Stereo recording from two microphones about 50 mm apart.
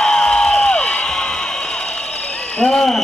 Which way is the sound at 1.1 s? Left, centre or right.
Centre.